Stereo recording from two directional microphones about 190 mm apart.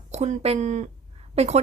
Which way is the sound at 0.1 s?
35° right (ahead or behind).